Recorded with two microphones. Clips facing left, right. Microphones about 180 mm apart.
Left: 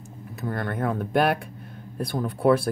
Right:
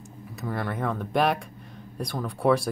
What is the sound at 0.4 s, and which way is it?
Speech, 5° right (ahead or behind).